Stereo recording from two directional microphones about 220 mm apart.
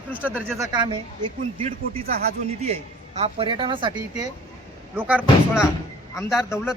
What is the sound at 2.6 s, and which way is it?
A woman's voice, 30° right (ahead or behind).